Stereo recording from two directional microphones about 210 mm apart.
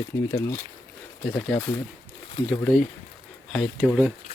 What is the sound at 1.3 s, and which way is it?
Speech, 5° left (ahead or behind).